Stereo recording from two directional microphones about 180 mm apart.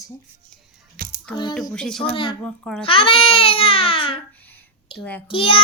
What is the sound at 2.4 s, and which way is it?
Speech, 5° left (ahead or behind).